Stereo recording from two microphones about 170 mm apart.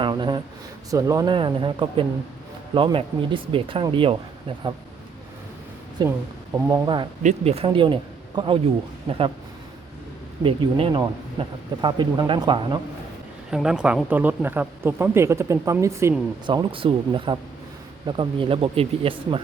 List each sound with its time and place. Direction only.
0.0 s a sound: 25° right (ahead or behind)
0.9 s speech: 20° right (ahead or behind)
6.1 s speech: 15° right (ahead or behind)
6.8 s speech: 30° right (ahead or behind)
7.2 s speech: 40° right (ahead or behind); by 8.5 s 25° right (ahead or behind)
10.4 s speech: 30° right (ahead or behind)
13.5 s speech: 5° right (ahead or behind)
16.5 s speech: 30° right (ahead or behind)